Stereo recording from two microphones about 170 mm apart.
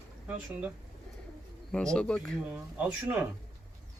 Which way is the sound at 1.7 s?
5° left (ahead or behind).